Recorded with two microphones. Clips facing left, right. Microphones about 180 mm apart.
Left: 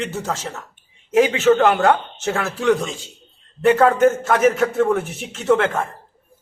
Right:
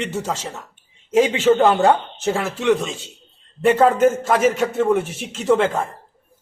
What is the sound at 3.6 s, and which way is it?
Speech, 10° right (ahead or behind).